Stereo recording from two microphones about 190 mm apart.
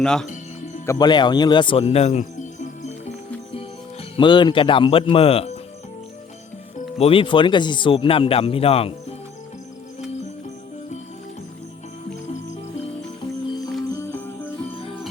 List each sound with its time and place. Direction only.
0.0 s speech: 5° left (ahead or behind)
0.9 s speech: 20° left (ahead or behind); by 2.9 s 40° left (ahead or behind)
4.2 s speech: 25° left (ahead or behind)
7.0 s speech: 30° left (ahead or behind)
13.9 s music: 15° left (ahead or behind)